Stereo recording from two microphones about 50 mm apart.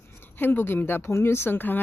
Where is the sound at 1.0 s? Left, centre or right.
Left.